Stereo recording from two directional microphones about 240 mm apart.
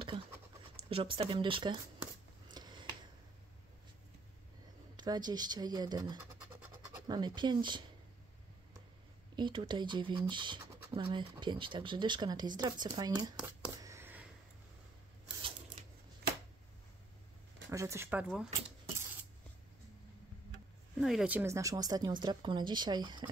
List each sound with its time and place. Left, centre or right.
0.1 s speech: centre
2.4 s a sound: centre
4.9 s speech: centre
9.3 s speech: centre
13.4 s a sound: centre
17.6 s speech: centre
21.0 s speech: centre